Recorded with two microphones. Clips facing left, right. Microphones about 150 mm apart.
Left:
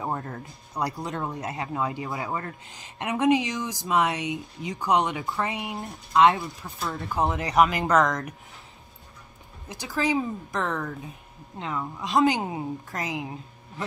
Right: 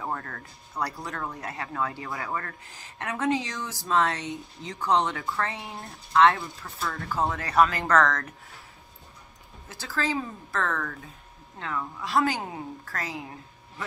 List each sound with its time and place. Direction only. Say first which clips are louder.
0.0 s speech: left 3 dB; 20° left (ahead or behind)
9.7 s a woman's voice: left 4 dB; 15° left (ahead or behind)